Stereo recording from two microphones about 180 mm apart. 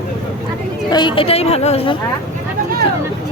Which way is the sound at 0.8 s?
25° left (ahead or behind).